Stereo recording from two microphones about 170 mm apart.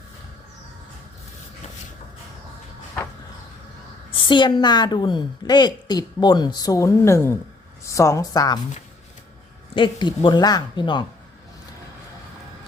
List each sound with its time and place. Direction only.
4.3 s a woman's voice: 30° left (ahead or behind)
9.7 s a woman's voice: 25° left (ahead or behind)